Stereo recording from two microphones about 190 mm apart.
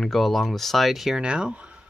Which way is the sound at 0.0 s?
Centre (ahead or behind).